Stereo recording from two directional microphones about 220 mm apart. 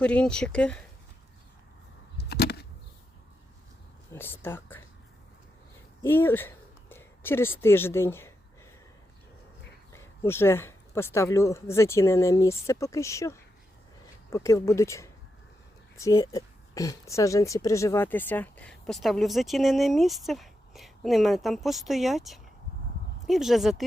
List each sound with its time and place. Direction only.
0.0 s a woman's voice: 5° left (ahead or behind)
2.1 s a sound: 50° left (ahead or behind)
4.1 s speech: 10° left (ahead or behind)
6.0 s speech: 10° left (ahead or behind)
9.9 s a woman's voice: 10° left (ahead or behind)